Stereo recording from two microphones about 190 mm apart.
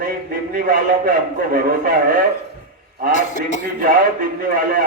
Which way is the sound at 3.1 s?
40° left (ahead or behind).